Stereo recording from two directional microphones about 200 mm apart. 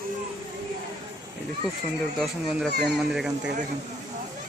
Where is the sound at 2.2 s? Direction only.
Centre (ahead or behind).